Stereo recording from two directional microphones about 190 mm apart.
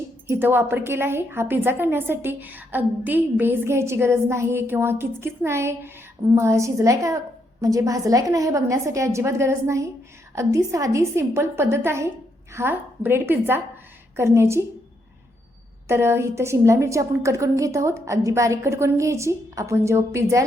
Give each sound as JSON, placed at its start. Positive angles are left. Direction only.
{"t": 0.3, "sound": "a woman's voice", "side_deg": -10}
{"t": 15.9, "sound": "a woman's voice", "side_deg": -15}